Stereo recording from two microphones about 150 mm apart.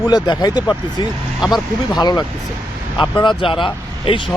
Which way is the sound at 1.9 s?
30° left (ahead or behind).